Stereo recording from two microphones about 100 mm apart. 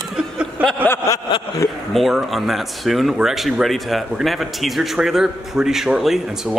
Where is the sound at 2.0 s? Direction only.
Centre (ahead or behind).